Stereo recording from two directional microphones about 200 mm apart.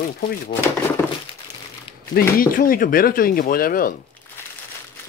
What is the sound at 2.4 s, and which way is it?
Speech, 45° left (ahead or behind).